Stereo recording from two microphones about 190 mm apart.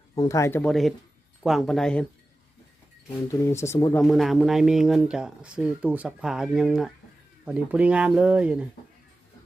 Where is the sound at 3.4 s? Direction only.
15° left (ahead or behind).